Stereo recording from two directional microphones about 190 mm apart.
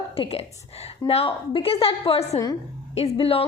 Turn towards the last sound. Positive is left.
turn(degrees=30)  # may be behind; listen again after turning